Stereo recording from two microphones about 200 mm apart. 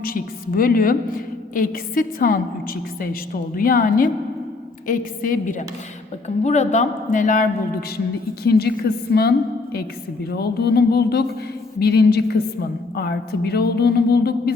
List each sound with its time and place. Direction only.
0.0 s a man's voice: 45° left (ahead or behind)
10.3 s speech: 55° left (ahead or behind)